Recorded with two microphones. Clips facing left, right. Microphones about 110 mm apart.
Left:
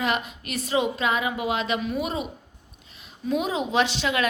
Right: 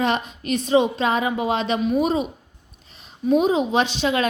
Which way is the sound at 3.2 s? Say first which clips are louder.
Right 7 dB; 20° right (ahead or behind).